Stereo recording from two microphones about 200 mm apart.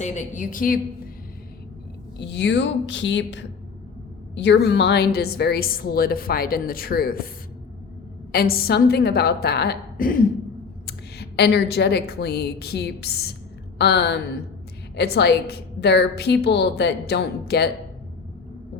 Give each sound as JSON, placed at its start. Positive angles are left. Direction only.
{"t": 0.0, "sound": "a woman's voice", "side_deg": 40}
{"t": 2.1, "sound": "a woman's voice", "side_deg": 60}
{"t": 8.3, "sound": "a woman's voice", "side_deg": 50}